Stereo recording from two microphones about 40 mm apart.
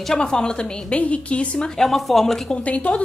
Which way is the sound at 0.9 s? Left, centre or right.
Left.